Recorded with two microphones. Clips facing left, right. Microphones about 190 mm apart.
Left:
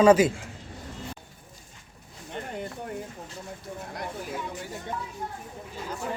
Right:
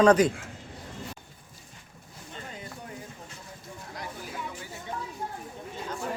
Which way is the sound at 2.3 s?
60° left (ahead or behind).